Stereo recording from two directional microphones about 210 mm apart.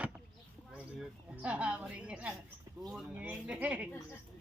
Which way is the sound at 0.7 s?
5° right (ahead or behind).